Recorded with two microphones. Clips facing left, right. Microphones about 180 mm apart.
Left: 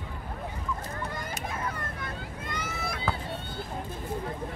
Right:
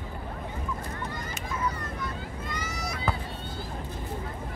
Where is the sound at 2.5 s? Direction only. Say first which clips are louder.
Left 2 dB; 55° left (ahead or behind).